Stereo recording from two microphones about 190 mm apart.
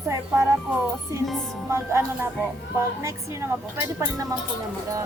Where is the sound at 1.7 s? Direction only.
15° right (ahead or behind).